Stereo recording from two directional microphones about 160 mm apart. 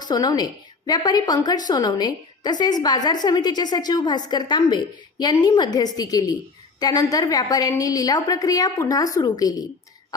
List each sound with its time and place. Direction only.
0.0 s a woman's voice: 25° left (ahead or behind)